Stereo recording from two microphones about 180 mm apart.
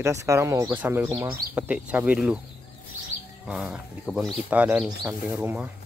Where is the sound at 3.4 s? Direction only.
5° right (ahead or behind).